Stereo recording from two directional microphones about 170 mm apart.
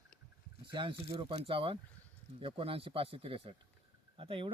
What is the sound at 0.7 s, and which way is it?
Speech, 30° right (ahead or behind).